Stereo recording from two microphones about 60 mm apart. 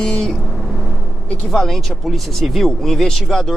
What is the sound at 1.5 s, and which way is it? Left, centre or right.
Speech, centre.